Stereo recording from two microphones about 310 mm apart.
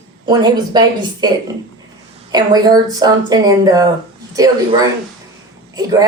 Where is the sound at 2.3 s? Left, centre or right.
Centre.